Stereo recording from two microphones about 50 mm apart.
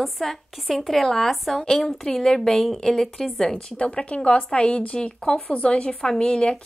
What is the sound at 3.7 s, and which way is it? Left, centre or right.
A woman's voice, left.